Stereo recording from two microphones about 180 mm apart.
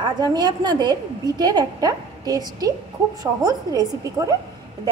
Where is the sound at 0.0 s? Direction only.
25° right (ahead or behind).